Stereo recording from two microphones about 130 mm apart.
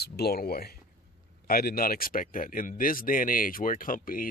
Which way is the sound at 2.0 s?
90° left.